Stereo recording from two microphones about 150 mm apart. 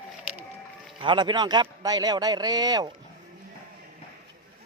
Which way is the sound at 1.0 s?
30° right (ahead or behind).